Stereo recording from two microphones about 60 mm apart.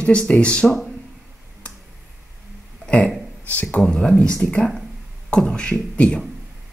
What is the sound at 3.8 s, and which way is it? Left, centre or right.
Speech, centre.